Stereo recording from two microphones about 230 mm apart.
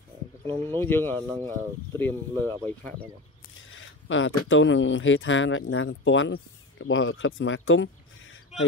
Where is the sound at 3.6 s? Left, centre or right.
Left.